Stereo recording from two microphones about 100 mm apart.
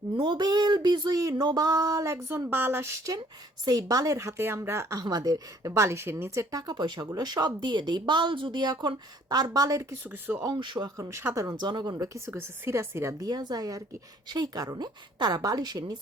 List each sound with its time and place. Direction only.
0.2 s a woman's voice: 45° right (ahead or behind)
2.2 s a woman's voice: 20° right (ahead or behind)
3.7 s a woman's voice: 40° right (ahead or behind)
5.0 s a woman's voice: 40° right (ahead or behind)
10.0 s a woman's voice: 20° right (ahead or behind)
10.4 s a woman's voice: 50° right (ahead or behind); by 11.5 s 30° right (ahead or behind)
11.5 s a woman's voice: 45° right (ahead or behind)
11.9 s a woman's voice: 30° right (ahead or behind)